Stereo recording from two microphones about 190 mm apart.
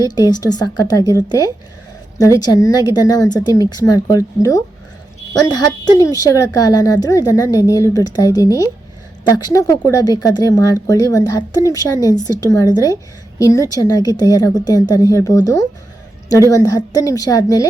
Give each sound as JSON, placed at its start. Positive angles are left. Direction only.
{"t": 0.0, "sound": "a woman's voice", "side_deg": 20}
{"t": 16.7, "sound": "a woman's voice", "side_deg": 20}